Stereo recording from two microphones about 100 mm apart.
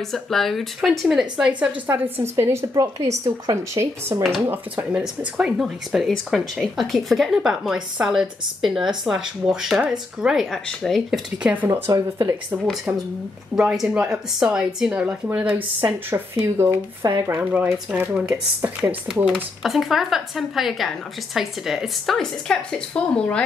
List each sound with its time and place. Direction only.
0.1 s speech: centre (ahead or behind)
1.9 s speech: 25° right (ahead or behind)
4.9 s speech: 10° right (ahead or behind)
11.1 s speech: 15° right (ahead or behind)
11.7 s speech: 25° right (ahead or behind)
13.6 s speech: 5° right (ahead or behind)
19.6 s speech: 5° right (ahead or behind)